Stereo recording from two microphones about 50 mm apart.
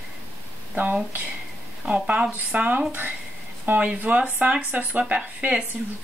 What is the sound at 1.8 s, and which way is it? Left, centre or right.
Speech, right.